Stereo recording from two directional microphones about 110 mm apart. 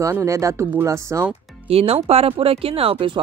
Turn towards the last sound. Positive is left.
turn(degrees=-55)  # may be behind; listen again after turning